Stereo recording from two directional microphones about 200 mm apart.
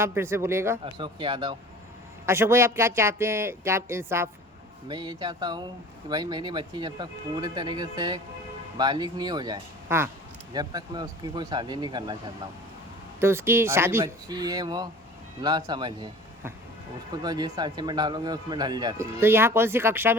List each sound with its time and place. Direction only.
0.0 s speech: 10° right (ahead or behind)
0.9 s a man's voice: 25° right (ahead or behind)
2.2 s a man's voice: 10° right (ahead or behind)
13.1 s a man's voice: 10° right (ahead or behind)
17.2 s a man's voice: 20° right (ahead or behind)